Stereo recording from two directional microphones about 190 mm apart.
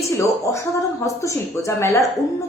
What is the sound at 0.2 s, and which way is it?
A woman's voice, 15° left (ahead or behind).